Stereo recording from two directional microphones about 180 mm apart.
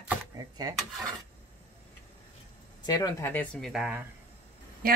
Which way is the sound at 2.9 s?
20° left (ahead or behind).